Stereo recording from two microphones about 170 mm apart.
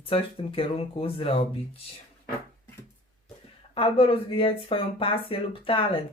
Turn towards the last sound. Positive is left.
turn(degrees=30)  # may be behind; listen again after turning